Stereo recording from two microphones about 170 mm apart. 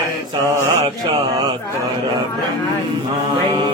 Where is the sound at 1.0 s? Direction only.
25° right (ahead or behind).